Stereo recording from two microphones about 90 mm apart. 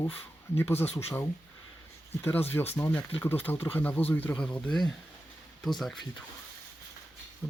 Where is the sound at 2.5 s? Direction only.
25° left (ahead or behind).